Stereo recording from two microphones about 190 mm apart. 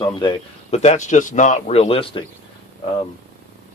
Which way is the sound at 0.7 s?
35° left (ahead or behind).